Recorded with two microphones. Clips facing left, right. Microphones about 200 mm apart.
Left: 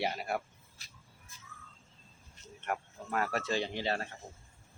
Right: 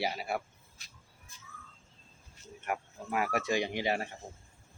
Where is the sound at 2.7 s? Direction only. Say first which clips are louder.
Right 1 dB; 10° right (ahead or behind).